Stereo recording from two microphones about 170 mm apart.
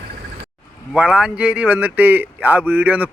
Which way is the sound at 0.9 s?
5° right (ahead or behind).